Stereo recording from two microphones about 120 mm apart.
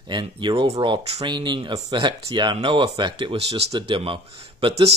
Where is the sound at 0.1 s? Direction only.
40° right (ahead or behind); by 3.6 s 60° right (ahead or behind).